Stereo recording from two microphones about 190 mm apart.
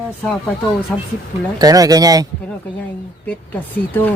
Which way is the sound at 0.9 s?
5° left (ahead or behind).